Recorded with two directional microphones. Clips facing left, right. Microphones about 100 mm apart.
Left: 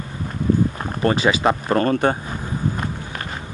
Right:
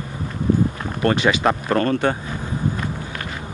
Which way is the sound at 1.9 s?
35° left (ahead or behind).